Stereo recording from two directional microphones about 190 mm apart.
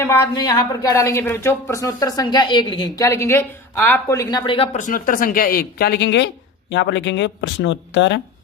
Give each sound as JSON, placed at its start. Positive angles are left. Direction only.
{"t": 0.0, "sound": "speech", "side_deg": 15}